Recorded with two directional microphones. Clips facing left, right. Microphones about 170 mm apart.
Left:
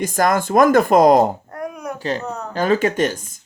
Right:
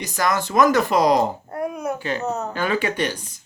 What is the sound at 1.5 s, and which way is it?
Babbling, 25° right (ahead or behind).